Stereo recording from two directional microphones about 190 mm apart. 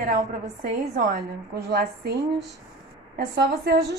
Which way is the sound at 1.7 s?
55° right (ahead or behind).